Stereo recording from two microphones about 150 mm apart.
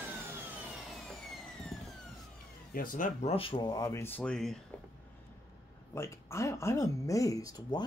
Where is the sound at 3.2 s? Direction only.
40° left (ahead or behind); by 4.5 s 5° left (ahead or behind).